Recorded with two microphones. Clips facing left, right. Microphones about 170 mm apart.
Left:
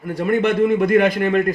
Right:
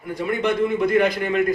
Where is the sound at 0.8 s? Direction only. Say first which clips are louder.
Left 3 dB; 55° left (ahead or behind).